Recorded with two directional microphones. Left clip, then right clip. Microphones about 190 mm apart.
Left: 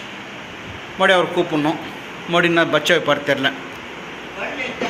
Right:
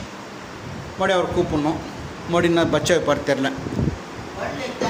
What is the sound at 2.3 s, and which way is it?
A man's voice, 20° right (ahead or behind).